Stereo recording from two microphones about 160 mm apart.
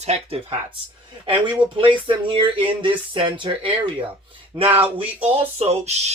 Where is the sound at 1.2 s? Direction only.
30° right (ahead or behind).